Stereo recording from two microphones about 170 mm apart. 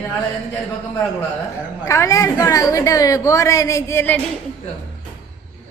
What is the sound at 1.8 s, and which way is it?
A woman's voice, 15° left (ahead or behind).